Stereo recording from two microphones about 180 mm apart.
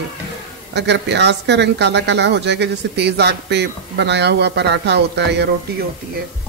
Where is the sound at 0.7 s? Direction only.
70° right (ahead or behind).